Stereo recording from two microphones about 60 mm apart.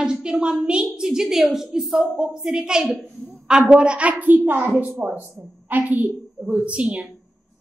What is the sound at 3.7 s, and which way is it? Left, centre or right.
A child's voice, centre.